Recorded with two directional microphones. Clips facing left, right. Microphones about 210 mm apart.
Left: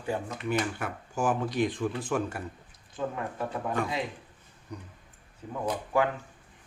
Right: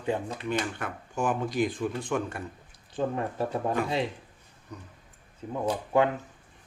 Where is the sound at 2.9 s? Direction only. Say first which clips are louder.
Right 4 dB; 30° right (ahead or behind).